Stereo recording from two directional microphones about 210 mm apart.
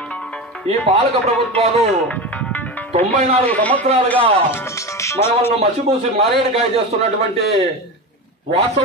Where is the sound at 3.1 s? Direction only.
30° right (ahead or behind).